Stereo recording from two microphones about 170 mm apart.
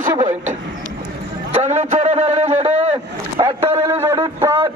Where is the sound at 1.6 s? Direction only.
40° right (ahead or behind).